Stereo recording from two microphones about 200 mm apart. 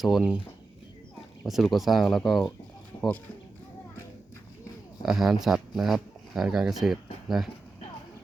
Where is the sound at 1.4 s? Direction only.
Centre (ahead or behind).